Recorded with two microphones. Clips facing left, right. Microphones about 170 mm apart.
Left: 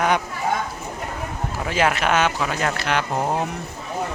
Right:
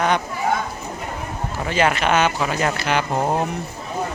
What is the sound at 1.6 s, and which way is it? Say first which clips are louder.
Speech: right 1 dB; centre (ahead or behind).